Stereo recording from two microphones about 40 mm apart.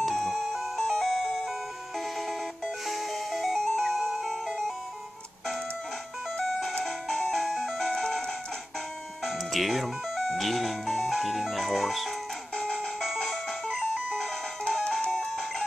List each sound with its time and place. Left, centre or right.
0.0 s music: centre
6.8 s music: centre
9.2 s music: centre
10.1 s speech: centre
12.5 s music: centre
12.8 s music: centre
14.9 s music: centre